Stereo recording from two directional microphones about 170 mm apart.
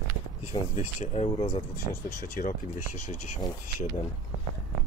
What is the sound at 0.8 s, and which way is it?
Speech, 40° left (ahead or behind).